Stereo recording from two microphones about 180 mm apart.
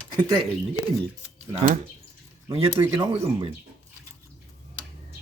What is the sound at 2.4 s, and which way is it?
Speech, 30° right (ahead or behind).